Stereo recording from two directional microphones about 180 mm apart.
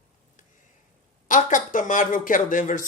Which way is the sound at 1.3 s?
45° left (ahead or behind).